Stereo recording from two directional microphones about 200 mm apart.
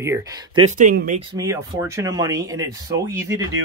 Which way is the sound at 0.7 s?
40° right (ahead or behind).